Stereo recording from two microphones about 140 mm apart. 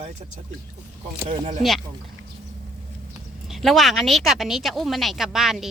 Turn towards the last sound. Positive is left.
turn(degrees=0)  # may be behind; listen again after turning